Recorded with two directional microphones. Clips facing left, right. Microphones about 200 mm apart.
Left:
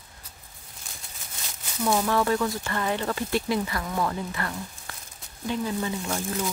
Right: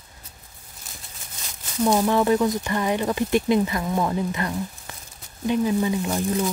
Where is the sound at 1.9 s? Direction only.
20° right (ahead or behind).